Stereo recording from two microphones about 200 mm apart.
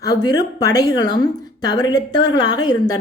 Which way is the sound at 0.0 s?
20° left (ahead or behind).